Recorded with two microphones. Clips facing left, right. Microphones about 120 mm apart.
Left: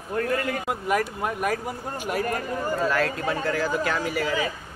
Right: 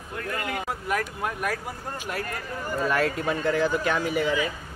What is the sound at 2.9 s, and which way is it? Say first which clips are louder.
Speech: even; centre (ahead or behind).